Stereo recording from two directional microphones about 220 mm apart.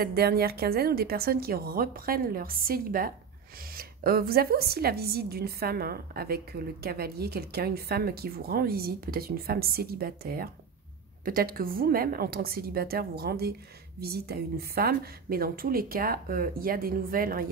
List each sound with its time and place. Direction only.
0.0 s a woman's voice: 45° right (ahead or behind)